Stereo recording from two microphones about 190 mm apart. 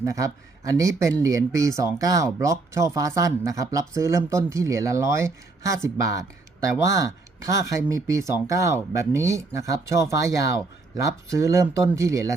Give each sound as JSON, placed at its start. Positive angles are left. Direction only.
{"t": 0.0, "sound": "speech", "side_deg": -15}